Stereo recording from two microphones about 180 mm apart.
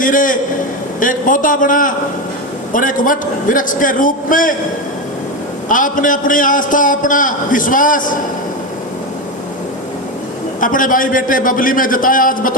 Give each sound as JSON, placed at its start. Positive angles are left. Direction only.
{"t": 0.0, "sound": "a man's voice", "side_deg": 50}
{"t": 5.6, "sound": "a man's voice", "side_deg": 45}
{"t": 10.6, "sound": "a man's voice", "side_deg": 50}